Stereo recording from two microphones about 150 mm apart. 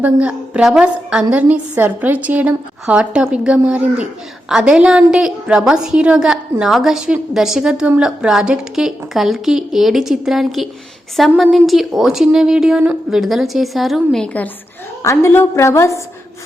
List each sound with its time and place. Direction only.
0.0 s a woman's voice: 10° right (ahead or behind)
15.0 s a woman's voice: 20° left (ahead or behind)